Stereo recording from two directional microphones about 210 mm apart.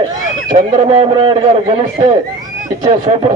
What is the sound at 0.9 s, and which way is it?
Speech, 25° right (ahead or behind).